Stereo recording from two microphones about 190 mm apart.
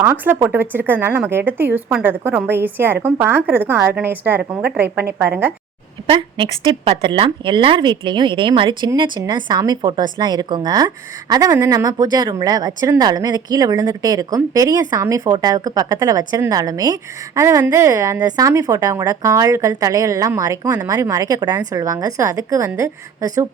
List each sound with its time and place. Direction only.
0.0 s speech: 10° right (ahead or behind)
6.1 s speech: 25° right (ahead or behind)